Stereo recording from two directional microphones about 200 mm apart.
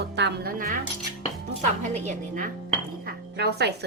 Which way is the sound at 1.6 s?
35° right (ahead or behind).